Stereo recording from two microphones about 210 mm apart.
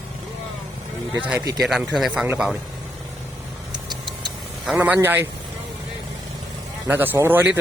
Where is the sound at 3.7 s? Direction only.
20° right (ahead or behind).